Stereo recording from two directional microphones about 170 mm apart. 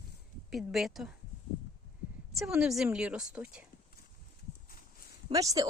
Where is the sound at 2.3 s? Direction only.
5° right (ahead or behind).